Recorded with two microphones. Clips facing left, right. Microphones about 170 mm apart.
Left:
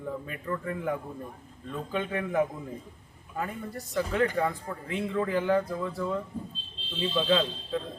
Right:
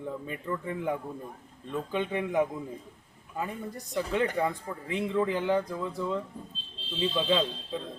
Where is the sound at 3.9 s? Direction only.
20° right (ahead or behind).